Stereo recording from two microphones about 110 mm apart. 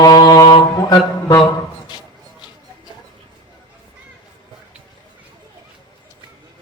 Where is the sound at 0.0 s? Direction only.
35° left (ahead or behind).